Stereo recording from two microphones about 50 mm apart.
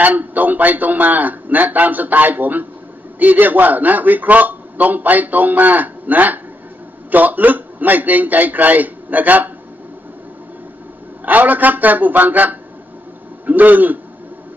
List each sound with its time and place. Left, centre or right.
0.0 s a man's voice: right
11.2 s a man's voice: right